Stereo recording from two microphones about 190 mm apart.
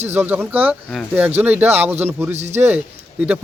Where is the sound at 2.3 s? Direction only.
35° right (ahead or behind).